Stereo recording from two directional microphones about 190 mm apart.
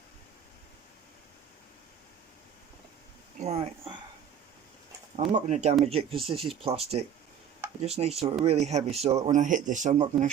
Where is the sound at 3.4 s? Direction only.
35° right (ahead or behind).